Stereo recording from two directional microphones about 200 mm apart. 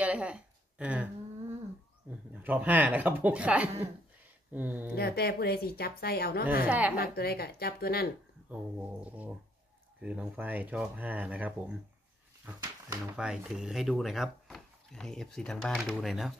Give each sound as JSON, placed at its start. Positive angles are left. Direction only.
{"t": 0.0, "sound": "a sound", "side_deg": -5}
{"t": 2.3, "sound": "speech", "side_deg": -10}
{"t": 4.9, "sound": "a woman's voice", "side_deg": 50}
{"t": 6.6, "sound": "speech", "side_deg": -5}
{"t": 7.0, "sound": "a woman's voice", "side_deg": 50}
{"t": 8.5, "sound": "speech", "side_deg": -10}
{"t": 13.1, "sound": "speech", "side_deg": -5}